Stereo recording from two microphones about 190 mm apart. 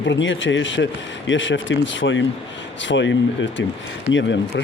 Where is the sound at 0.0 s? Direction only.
75° left (ahead or behind).